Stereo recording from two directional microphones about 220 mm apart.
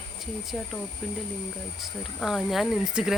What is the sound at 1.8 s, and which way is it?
A woman's voice, centre (ahead or behind).